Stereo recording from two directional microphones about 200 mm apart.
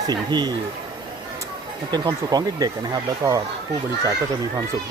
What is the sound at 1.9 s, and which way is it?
Speech, 20° right (ahead or behind).